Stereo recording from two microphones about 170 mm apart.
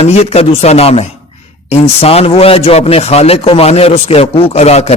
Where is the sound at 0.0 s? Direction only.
40° left (ahead or behind).